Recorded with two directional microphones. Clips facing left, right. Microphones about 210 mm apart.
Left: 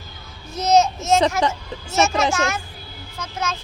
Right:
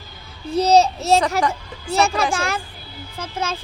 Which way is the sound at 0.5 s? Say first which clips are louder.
Right 2 dB; 35° right (ahead or behind).